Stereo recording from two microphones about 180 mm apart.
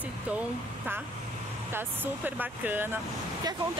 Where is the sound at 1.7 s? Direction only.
10° right (ahead or behind).